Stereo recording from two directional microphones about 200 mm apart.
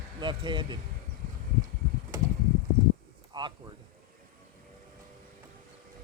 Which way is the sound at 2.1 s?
15° right (ahead or behind).